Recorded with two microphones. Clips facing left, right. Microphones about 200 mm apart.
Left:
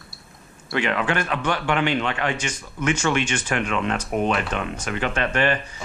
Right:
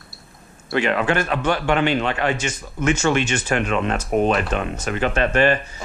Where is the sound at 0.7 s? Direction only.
40° right (ahead or behind).